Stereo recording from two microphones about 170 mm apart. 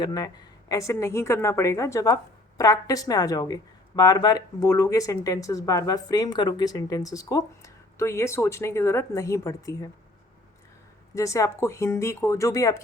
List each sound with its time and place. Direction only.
0.0 s a woman's voice: 25° left (ahead or behind)
11.1 s speech: 20° left (ahead or behind)